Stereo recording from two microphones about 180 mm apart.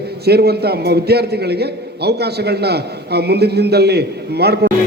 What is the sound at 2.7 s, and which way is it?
A man's voice, 65° right (ahead or behind).